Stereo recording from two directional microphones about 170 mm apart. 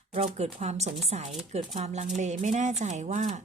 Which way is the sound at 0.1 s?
40° right (ahead or behind).